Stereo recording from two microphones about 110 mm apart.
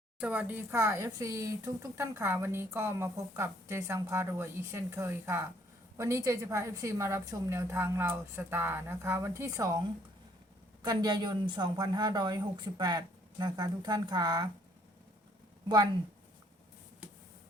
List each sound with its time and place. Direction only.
0.2 s a woman's voice: 15° right (ahead or behind); by 9.8 s 30° right (ahead or behind)
10.8 s speech: 40° right (ahead or behind)